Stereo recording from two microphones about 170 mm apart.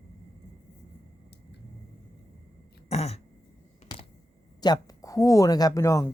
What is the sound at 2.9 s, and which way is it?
Throat clearing, 40° left (ahead or behind).